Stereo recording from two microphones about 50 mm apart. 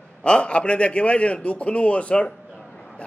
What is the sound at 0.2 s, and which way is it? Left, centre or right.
A man's voice, left.